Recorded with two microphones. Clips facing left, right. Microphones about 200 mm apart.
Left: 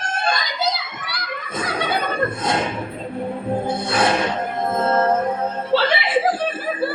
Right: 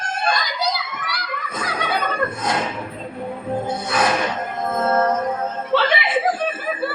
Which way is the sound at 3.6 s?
30° left (ahead or behind).